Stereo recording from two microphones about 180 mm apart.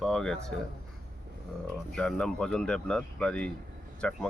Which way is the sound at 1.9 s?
5° left (ahead or behind).